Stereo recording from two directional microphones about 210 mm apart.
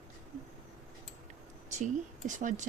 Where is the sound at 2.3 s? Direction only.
35° right (ahead or behind).